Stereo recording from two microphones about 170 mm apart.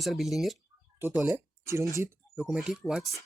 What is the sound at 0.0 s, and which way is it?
Speech, centre (ahead or behind).